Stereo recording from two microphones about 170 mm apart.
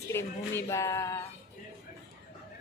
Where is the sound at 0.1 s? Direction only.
15° left (ahead or behind).